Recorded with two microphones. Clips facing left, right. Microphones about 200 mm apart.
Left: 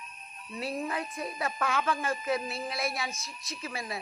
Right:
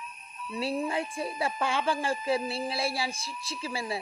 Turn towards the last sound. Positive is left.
turn(degrees=-30)  # may be behind; listen again after turning